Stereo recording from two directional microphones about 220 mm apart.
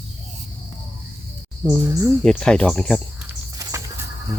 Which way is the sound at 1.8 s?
15° right (ahead or behind).